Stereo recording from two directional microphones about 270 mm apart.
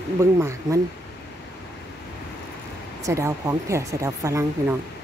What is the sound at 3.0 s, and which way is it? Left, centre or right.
Speech, centre.